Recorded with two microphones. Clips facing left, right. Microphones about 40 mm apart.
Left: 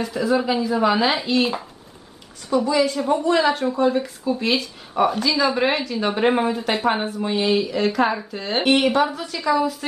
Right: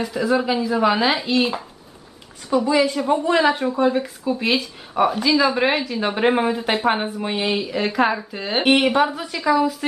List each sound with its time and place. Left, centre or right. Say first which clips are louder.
0.0 s speech: right 1 dB; centre
2.5 s speech: right 1 dB; centre